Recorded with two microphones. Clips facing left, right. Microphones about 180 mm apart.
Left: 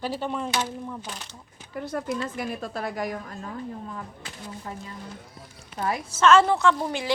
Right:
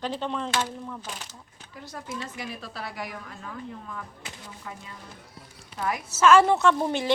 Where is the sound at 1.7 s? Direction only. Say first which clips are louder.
Left 8 dB; 55° left (ahead or behind).